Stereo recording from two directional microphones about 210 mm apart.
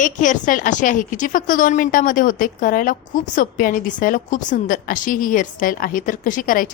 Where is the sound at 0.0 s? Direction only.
40° left (ahead or behind).